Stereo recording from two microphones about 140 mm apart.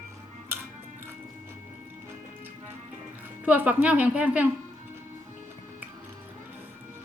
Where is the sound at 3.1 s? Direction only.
10° right (ahead or behind).